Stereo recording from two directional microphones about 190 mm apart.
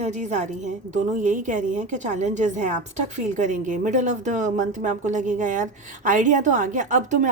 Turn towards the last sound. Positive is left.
turn(degrees=-40)  # may be behind; listen again after turning